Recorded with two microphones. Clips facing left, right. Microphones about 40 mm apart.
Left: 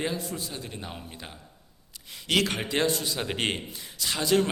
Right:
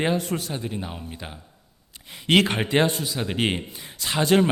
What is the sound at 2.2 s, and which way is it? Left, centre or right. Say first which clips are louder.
Speech: right 6 dB; right.